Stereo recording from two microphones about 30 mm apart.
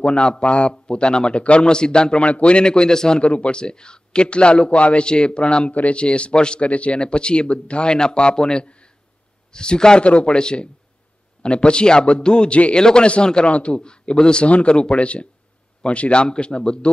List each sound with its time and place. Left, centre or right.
0.0 s a man's voice: left
2.2 s a man's voice: left
3.2 s a man's voice: left
3.5 s a man's voice: left
5.7 s a man's voice: left
5.9 s a man's voice: left
6.7 s a man's voice: left
7.0 s a man's voice: left
13.5 s a man's voice: left
13.7 s a man's voice: left
14.4 s a man's voice: left